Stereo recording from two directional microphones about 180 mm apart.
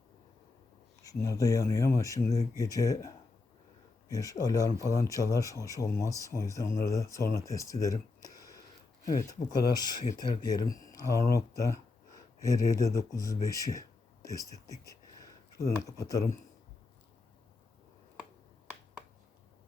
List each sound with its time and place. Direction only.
1.0 s speech: 15° left (ahead or behind)
4.1 s speech: 20° left (ahead or behind)
14.7 s a sound: 20° left (ahead or behind)